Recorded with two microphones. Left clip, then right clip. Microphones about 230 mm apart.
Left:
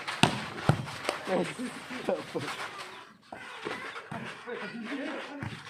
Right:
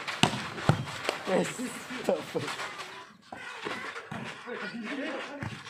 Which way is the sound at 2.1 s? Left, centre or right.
Right.